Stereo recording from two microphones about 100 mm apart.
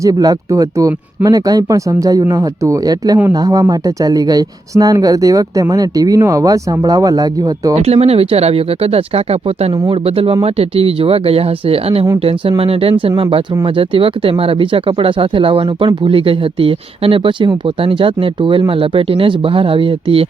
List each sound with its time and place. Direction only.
0.0 s speech: 40° right (ahead or behind)
7.8 s speech: 90° right
9.9 s speech: 70° right (ahead or behind)
10.4 s speech: 80° right; by 20.2 s 60° right (ahead or behind)